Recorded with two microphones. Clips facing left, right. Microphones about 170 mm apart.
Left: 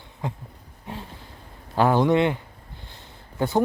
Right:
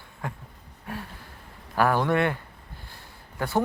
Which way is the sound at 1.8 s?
20° left (ahead or behind).